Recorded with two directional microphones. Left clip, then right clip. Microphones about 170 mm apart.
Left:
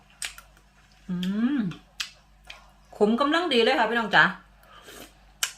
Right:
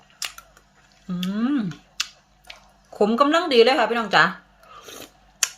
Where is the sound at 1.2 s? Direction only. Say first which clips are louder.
Right 3 dB; 30° right (ahead or behind).